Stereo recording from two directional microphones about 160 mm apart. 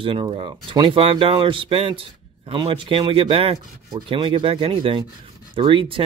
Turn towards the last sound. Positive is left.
turn(degrees=-30)  # may be behind; listen again after turning